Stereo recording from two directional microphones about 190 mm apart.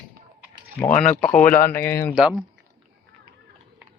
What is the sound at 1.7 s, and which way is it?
Speech, 10° left (ahead or behind).